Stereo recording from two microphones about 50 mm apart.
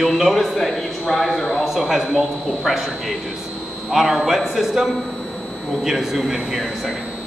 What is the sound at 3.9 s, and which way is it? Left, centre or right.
Speech, centre.